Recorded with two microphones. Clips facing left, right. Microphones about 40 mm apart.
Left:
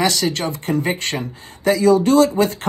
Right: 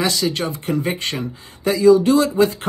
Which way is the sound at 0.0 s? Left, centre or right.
Left.